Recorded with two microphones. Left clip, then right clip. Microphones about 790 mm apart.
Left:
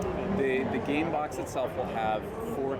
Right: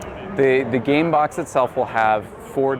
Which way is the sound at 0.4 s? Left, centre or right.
Right.